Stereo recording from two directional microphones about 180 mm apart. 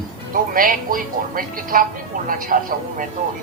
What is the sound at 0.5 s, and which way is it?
Speech, 50° right (ahead or behind).